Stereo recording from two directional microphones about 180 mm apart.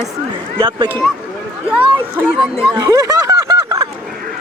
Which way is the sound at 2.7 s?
20° right (ahead or behind).